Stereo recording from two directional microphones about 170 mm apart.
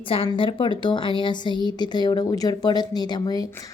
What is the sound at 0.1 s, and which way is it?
A woman's voice, 30° left (ahead or behind).